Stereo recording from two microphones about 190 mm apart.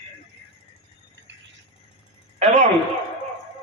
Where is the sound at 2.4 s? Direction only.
40° right (ahead or behind).